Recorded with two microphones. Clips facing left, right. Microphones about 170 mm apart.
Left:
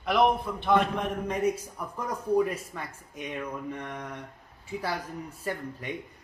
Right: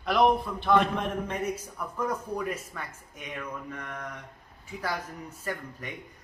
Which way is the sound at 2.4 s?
30° left (ahead or behind).